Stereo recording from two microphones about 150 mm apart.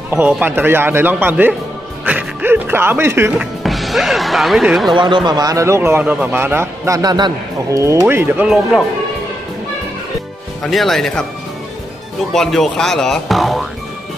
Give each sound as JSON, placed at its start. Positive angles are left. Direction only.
{"t": 0.1, "sound": "speech", "side_deg": -10}
{"t": 3.6, "sound": "speech", "side_deg": 0}
{"t": 5.1, "sound": "a man's voice", "side_deg": -30}
{"t": 10.6, "sound": "speech", "side_deg": 0}
{"t": 12.3, "sound": "speech", "side_deg": 0}